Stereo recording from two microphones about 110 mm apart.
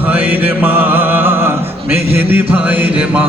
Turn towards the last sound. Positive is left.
turn(degrees=-10)  # may be behind; listen again after turning